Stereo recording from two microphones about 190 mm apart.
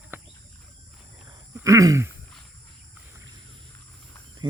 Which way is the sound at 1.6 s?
15° right (ahead or behind).